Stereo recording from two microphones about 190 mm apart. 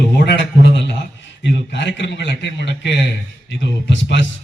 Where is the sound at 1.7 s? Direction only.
70° left (ahead or behind).